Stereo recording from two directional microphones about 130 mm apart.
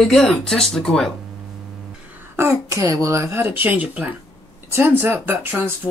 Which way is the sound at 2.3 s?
20° right (ahead or behind).